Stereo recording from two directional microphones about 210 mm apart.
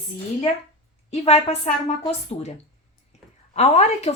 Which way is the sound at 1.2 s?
30° left (ahead or behind).